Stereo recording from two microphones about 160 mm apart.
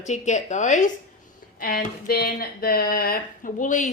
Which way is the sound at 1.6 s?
70° left (ahead or behind).